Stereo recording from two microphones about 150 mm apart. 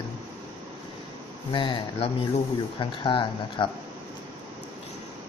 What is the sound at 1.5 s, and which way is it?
Speech, 35° left (ahead or behind).